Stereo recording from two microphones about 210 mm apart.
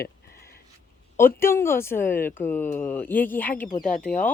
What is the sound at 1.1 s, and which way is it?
Speech, 10° left (ahead or behind).